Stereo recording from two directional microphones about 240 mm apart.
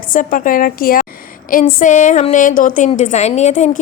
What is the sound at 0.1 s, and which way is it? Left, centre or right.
A woman's voice, left.